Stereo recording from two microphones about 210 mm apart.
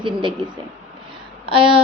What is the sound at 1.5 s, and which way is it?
Speech, 25° right (ahead or behind).